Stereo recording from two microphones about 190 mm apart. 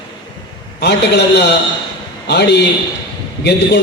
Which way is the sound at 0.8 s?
60° left (ahead or behind).